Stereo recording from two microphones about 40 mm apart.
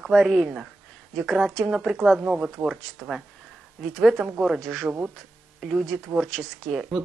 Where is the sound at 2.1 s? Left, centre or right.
Right.